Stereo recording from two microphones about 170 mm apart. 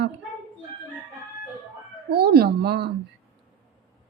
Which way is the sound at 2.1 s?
65° right (ahead or behind).